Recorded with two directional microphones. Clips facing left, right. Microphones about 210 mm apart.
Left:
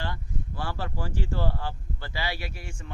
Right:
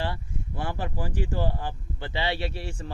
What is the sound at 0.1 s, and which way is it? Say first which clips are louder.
Speech: right 1 dB; 20° right (ahead or behind).